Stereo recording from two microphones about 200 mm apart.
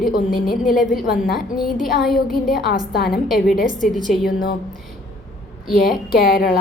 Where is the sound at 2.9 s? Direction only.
50° left (ahead or behind).